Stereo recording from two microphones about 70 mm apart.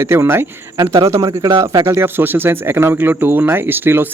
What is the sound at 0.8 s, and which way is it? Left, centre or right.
A man's voice, right.